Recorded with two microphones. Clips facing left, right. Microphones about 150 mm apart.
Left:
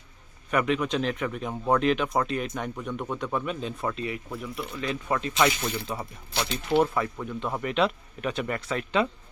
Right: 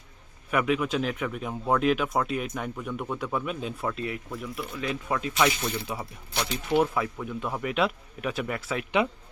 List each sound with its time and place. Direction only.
0.5 s speech: 5° right (ahead or behind)
5.4 s speech: 10° left (ahead or behind)
6.7 s speech: 5° right (ahead or behind)